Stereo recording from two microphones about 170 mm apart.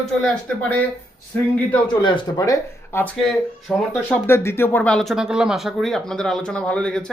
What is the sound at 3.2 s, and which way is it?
Speech, centre (ahead or behind).